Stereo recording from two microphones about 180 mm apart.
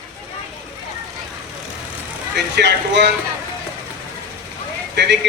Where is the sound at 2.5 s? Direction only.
70° right (ahead or behind).